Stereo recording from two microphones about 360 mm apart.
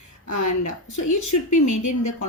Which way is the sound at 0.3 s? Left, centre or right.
Left.